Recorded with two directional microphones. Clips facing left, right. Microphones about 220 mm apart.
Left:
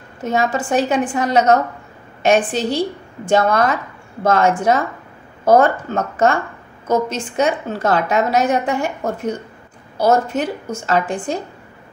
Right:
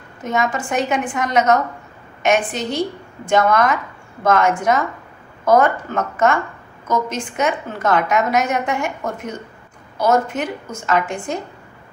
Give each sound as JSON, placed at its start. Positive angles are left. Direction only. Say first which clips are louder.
{"t": 0.2, "sound": "a woman's voice", "louder": "left 2 dB", "side_deg": 30}